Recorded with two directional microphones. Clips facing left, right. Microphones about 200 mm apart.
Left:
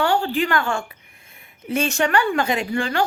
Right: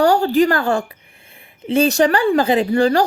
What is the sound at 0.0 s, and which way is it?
A woman's voice, 40° right (ahead or behind).